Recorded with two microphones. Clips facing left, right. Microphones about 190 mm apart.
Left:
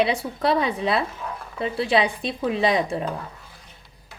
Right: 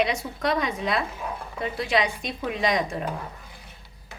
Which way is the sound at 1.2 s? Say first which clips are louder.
Even; 15° right (ahead or behind).